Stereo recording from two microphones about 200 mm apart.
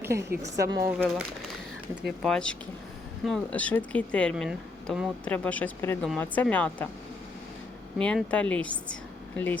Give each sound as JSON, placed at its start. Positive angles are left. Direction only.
{"t": 0.0, "sound": "a woman's voice", "side_deg": -15}
{"t": 0.9, "sound": "speech", "side_deg": 0}
{"t": 2.2, "sound": "speech", "side_deg": 5}
{"t": 8.0, "sound": "speech", "side_deg": 5}